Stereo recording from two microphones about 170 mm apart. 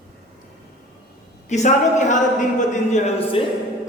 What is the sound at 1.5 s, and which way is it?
A man's voice, 45° left (ahead or behind).